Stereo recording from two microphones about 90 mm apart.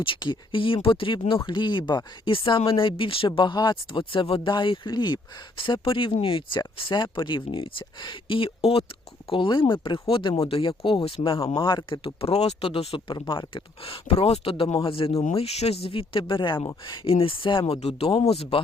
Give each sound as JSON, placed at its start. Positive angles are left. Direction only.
{"t": 0.0, "sound": "speech", "side_deg": 65}
{"t": 6.7, "sound": "speech", "side_deg": 65}
{"t": 9.3, "sound": "speech", "side_deg": 70}
{"t": 11.6, "sound": "speech", "side_deg": 65}
{"t": 13.1, "sound": "speech", "side_deg": 65}